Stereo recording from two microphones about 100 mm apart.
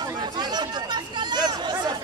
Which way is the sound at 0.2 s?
45° right (ahead or behind).